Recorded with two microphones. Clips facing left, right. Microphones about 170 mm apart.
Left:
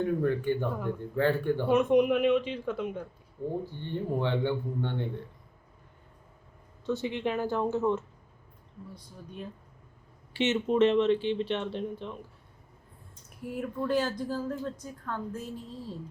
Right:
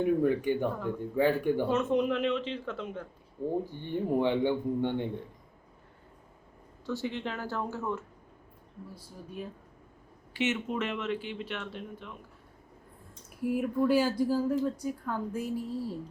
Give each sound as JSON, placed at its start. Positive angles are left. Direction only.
{"t": 0.0, "sound": "speech", "side_deg": -15}
{"t": 1.6, "sound": "a man's voice", "side_deg": 15}
{"t": 3.7, "sound": "speech", "side_deg": -15}
{"t": 6.8, "sound": "speech", "side_deg": 20}
{"t": 10.3, "sound": "speech", "side_deg": 30}
{"t": 13.4, "sound": "speech", "side_deg": -10}